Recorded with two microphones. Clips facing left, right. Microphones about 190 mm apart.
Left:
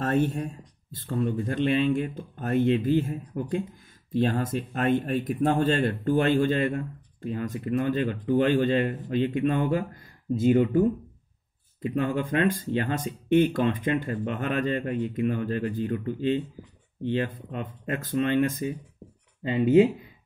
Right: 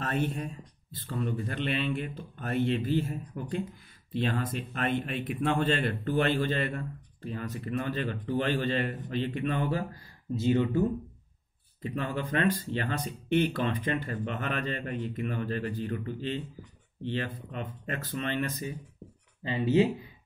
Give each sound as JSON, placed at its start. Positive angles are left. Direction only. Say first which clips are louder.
{"t": 0.0, "sound": "speech", "louder": "left 6 dB", "side_deg": 45}
{"t": 11.8, "sound": "speech", "louder": "left 6 dB", "side_deg": 45}